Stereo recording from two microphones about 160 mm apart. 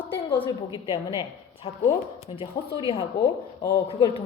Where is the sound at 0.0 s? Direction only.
35° left (ahead or behind).